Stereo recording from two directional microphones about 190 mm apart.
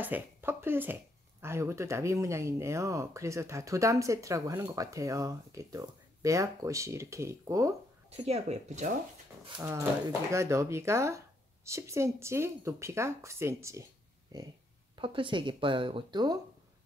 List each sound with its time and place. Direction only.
0.0 s speech: 10° right (ahead or behind)
8.1 s speech: 35° right (ahead or behind)
9.6 s speech: 15° right (ahead or behind)
15.0 s speech: 25° right (ahead or behind)